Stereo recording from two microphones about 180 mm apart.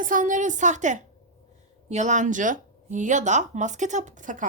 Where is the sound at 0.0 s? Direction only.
45° right (ahead or behind).